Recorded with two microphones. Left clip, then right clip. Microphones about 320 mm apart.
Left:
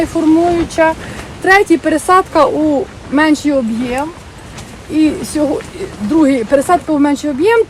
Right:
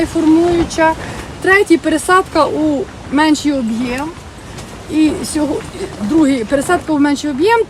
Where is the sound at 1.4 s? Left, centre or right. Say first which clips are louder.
Left 1 dB; centre.